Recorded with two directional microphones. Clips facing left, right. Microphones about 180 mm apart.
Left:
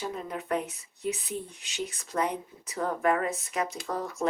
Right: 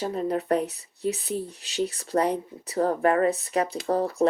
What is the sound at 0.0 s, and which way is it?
Speech, 35° right (ahead or behind).